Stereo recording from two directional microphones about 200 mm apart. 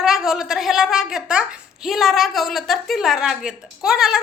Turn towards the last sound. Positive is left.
turn(degrees=0)  # may be behind; listen again after turning